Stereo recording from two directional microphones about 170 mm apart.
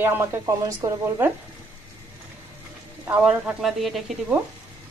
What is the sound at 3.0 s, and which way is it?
A woman's voice, 10° right (ahead or behind).